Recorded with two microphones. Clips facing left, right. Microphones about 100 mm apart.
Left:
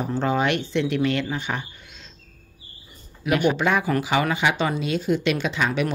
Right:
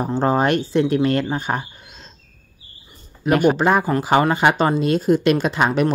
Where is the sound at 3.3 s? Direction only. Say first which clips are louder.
Right 5 dB; 40° right (ahead or behind).